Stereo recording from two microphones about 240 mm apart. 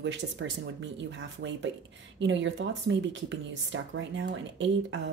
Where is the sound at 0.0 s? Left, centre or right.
Right.